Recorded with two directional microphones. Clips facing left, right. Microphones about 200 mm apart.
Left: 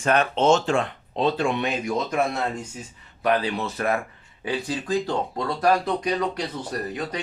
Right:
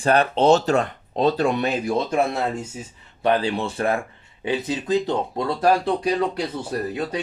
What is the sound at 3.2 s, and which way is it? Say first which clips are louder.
Speech: right 2 dB; 30° right (ahead or behind).